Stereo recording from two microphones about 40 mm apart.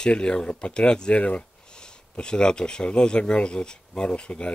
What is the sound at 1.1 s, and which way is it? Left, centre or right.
Speech, left.